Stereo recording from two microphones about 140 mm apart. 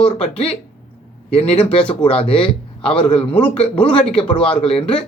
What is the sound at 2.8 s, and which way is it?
A man's voice, 5° left (ahead or behind).